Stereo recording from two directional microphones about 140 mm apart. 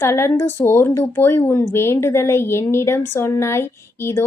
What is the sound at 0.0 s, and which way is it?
A woman's voice, 20° left (ahead or behind).